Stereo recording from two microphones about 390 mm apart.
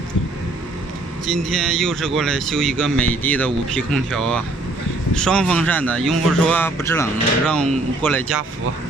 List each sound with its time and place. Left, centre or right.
1.3 s speech: centre